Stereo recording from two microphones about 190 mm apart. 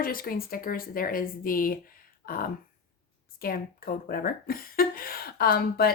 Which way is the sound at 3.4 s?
50° left (ahead or behind).